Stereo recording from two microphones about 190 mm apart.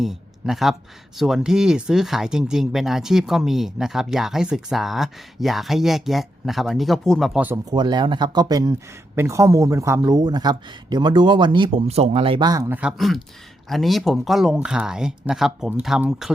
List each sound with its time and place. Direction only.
0.0 s speech: centre (ahead or behind)
7.6 s a man's voice: 20° right (ahead or behind); by 16.3 s centre (ahead or behind)